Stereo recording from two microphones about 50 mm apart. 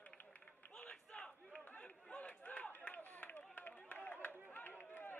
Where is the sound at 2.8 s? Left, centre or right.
Left.